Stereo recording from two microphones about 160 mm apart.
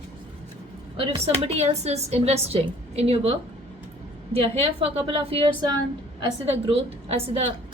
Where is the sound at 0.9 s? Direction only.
35° right (ahead or behind).